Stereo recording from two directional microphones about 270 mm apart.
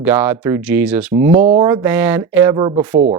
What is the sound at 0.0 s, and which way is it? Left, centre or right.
Speech, centre.